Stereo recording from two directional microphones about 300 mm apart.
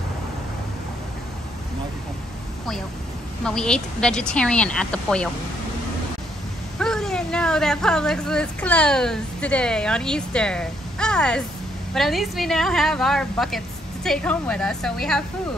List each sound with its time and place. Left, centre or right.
3.4 s a woman's voice: centre
6.8 s a woman's voice: centre